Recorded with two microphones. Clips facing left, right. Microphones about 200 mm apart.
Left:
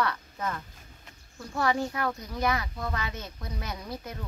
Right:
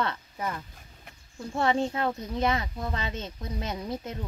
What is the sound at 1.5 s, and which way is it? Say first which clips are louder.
A woman's voice: right 2 dB; 25° right (ahead or behind).